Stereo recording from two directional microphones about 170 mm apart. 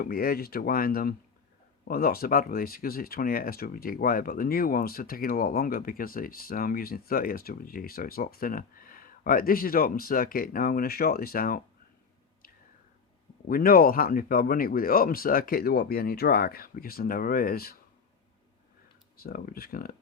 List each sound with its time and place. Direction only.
0.0 s speech: 60° left (ahead or behind)
13.5 s speech: 60° left (ahead or behind)
19.2 s speech: 55° left (ahead or behind)